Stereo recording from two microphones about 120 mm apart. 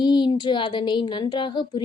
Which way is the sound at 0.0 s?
40° left (ahead or behind).